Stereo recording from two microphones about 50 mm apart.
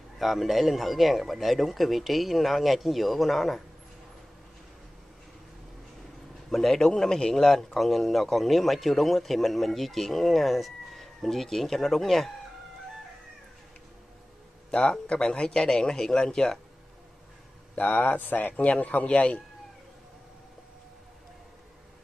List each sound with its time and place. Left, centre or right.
0.2 s a man's voice: centre
6.5 s a man's voice: centre
14.7 s speech: centre
17.7 s a man's voice: left